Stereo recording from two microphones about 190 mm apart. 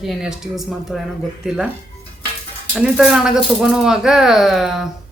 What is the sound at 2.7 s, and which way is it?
Speech, 5° right (ahead or behind).